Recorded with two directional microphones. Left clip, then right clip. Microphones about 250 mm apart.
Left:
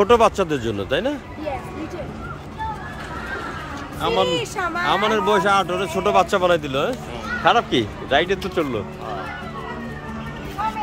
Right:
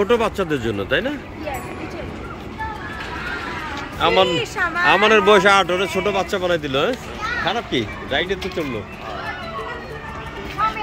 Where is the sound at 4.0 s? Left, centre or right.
Centre.